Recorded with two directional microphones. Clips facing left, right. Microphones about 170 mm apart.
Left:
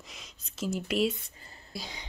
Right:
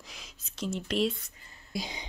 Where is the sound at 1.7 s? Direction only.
15° right (ahead or behind).